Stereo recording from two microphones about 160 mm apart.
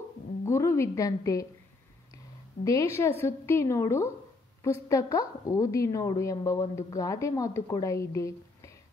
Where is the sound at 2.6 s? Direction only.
20° left (ahead or behind).